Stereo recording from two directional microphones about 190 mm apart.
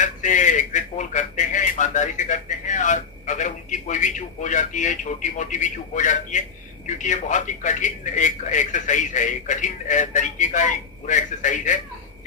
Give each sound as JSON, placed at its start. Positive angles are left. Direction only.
{"t": 0.0, "sound": "a man's voice", "side_deg": 40}